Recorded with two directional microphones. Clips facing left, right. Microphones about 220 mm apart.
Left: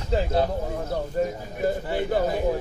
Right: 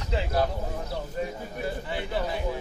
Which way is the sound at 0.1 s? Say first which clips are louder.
Left 4 dB; 40° left (ahead or behind).